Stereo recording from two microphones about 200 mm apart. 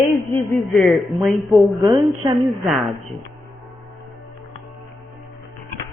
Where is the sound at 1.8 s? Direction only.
25° right (ahead or behind).